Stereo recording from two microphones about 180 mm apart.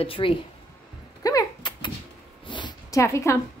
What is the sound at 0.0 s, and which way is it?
Speech, 30° left (ahead or behind).